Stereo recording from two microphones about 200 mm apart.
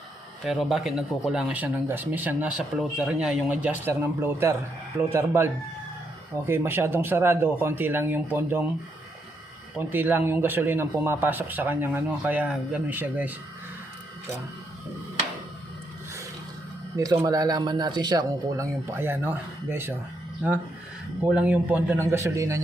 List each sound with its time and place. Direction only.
0.4 s speech: centre (ahead or behind)
6.5 s speech: 10° right (ahead or behind)
9.7 s speech: 10° right (ahead or behind)
17.0 s speech: 20° right (ahead or behind)
21.2 s speech: 5° right (ahead or behind)